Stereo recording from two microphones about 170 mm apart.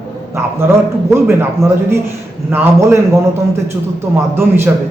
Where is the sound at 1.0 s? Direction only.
15° right (ahead or behind).